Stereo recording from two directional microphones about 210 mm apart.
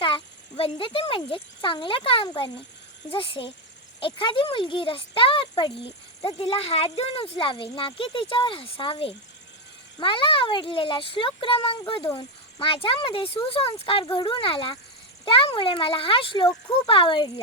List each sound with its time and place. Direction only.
0.0 s a child's voice: 25° left (ahead or behind)